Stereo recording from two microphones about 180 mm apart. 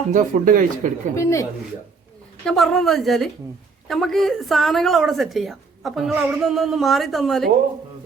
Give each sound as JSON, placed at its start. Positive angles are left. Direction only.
{"t": 0.1, "sound": "speech", "side_deg": -45}
{"t": 1.1, "sound": "speech", "side_deg": 15}
{"t": 2.4, "sound": "a woman's voice", "side_deg": 5}